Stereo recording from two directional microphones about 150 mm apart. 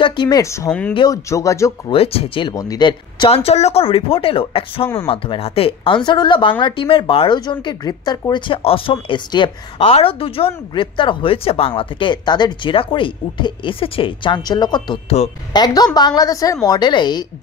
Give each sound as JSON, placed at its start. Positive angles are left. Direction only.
{"t": 0.0, "sound": "a woman's voice", "side_deg": 30}
{"t": 0.7, "sound": "speech", "side_deg": 10}
{"t": 0.9, "sound": "a woman's voice", "side_deg": 25}
{"t": 1.9, "sound": "speech", "side_deg": 40}
{"t": 2.5, "sound": "a woman's voice", "side_deg": 25}